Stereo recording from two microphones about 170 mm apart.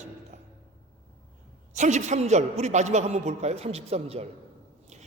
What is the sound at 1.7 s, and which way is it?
A man's voice, 45° right (ahead or behind).